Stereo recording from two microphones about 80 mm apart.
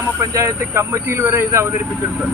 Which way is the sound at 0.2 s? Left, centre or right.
Right.